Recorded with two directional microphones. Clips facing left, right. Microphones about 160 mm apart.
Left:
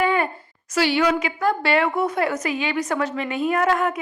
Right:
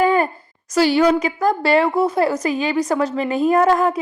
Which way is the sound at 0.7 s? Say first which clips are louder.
Right 5 dB; 40° right (ahead or behind).